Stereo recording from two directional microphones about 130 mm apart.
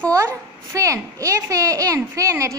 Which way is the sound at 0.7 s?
25° right (ahead or behind).